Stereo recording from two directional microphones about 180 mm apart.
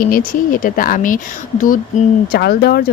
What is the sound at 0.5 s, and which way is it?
Speech, 50° left (ahead or behind).